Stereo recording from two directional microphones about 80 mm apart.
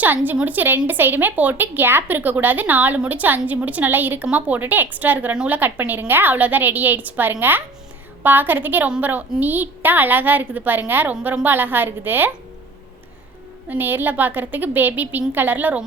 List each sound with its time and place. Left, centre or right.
0.0 s speech: right
13.7 s speech: right